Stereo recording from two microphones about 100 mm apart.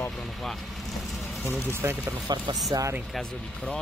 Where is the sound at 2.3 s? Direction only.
35° right (ahead or behind).